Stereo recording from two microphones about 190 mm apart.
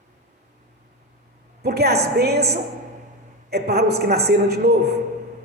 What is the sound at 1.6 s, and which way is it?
A woman's voice, 55° right (ahead or behind).